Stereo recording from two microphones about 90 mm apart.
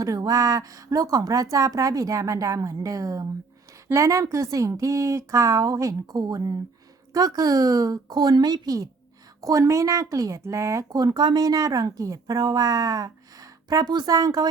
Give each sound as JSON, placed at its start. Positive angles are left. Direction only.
{"t": 0.0, "sound": "speech", "side_deg": -40}